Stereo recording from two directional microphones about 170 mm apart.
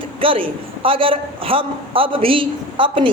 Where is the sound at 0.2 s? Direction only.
30° right (ahead or behind).